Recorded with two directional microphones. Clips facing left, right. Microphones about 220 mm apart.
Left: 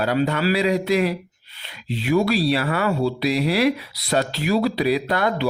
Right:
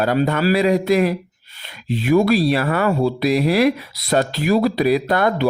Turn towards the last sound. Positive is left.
turn(degrees=-50)  # may be behind; listen again after turning